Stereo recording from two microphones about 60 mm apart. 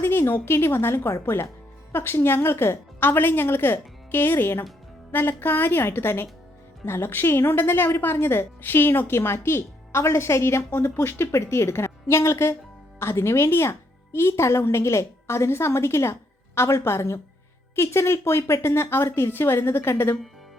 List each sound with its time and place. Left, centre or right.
0.0 s a woman's voice: left